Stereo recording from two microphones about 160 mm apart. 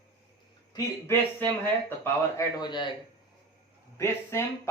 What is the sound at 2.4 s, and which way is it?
Speech, 25° left (ahead or behind).